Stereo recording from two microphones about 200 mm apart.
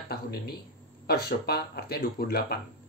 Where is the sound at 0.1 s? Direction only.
50° left (ahead or behind).